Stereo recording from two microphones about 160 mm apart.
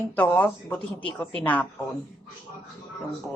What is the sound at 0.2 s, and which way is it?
Speech, 10° left (ahead or behind).